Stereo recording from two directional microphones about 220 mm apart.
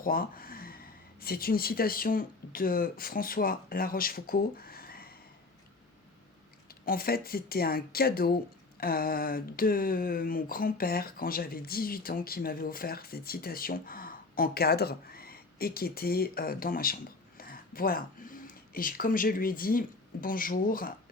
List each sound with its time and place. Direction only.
0.0 s speech: 40° left (ahead or behind)
6.7 s speech: 40° left (ahead or behind)